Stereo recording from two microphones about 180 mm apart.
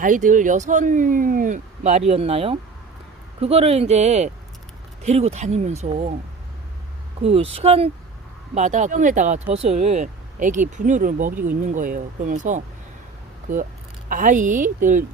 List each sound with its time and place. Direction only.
0.0 s speech: 45° right (ahead or behind)
7.2 s speech: 35° right (ahead or behind)
14.1 s speech: 45° right (ahead or behind)